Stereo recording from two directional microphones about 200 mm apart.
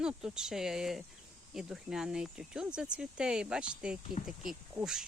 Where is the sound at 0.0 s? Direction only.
5° right (ahead or behind).